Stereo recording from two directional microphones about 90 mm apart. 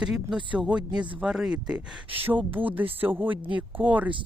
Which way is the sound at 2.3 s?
20° right (ahead or behind).